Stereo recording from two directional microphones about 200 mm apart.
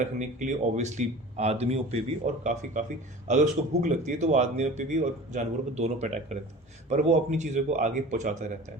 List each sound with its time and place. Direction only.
0.0 s speech: 35° right (ahead or behind)